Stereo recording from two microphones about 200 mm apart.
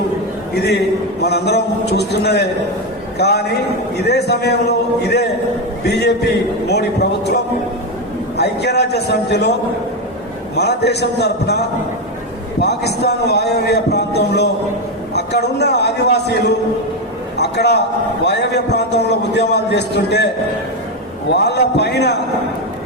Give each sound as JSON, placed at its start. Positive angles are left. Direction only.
{"t": 0.5, "sound": "a man's voice", "side_deg": 55}
{"t": 5.8, "sound": "a man's voice", "side_deg": 55}
{"t": 10.5, "sound": "a man's voice", "side_deg": 55}
{"t": 21.3, "sound": "a man's voice", "side_deg": 55}